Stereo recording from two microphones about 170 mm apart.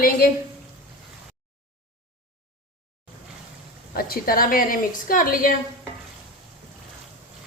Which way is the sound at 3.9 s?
60° left (ahead or behind).